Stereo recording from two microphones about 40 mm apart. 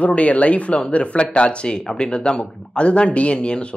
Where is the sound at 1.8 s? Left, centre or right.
Centre.